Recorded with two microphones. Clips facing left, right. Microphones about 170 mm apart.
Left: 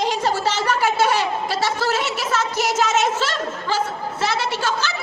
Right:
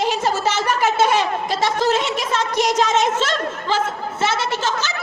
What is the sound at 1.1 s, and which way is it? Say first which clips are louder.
Speech: right 2 dB; 20° right (ahead or behind).